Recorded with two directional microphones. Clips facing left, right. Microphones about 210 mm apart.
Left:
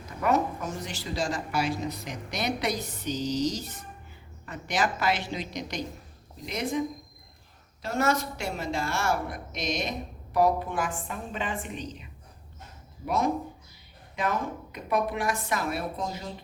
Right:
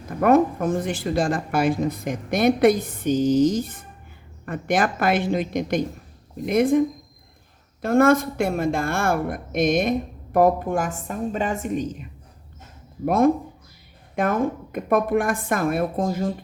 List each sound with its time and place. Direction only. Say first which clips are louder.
0.1 s a woman's voice: right 9 dB; 55° right (ahead or behind)
13.1 s a woman's voice: right 9 dB; 55° right (ahead or behind)